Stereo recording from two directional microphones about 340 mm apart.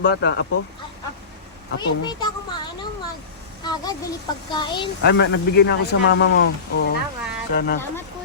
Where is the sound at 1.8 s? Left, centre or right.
Centre.